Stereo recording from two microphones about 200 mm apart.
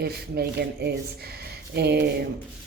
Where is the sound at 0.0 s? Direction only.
50° right (ahead or behind).